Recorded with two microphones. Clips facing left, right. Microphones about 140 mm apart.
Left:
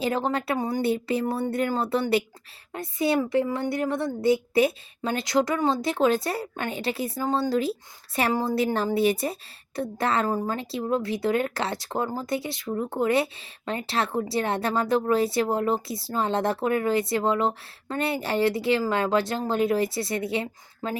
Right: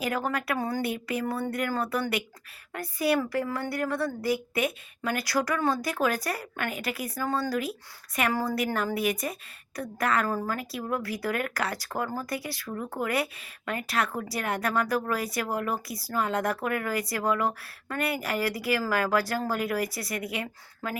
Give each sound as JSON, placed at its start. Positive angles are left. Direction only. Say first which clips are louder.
{"t": 0.0, "sound": "a woman's voice", "louder": "left 4 dB", "side_deg": 25}